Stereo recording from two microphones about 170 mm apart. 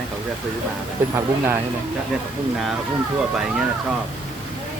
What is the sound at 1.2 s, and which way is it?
Speech, 15° right (ahead or behind).